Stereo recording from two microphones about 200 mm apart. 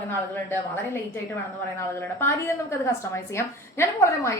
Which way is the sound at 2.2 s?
10° left (ahead or behind).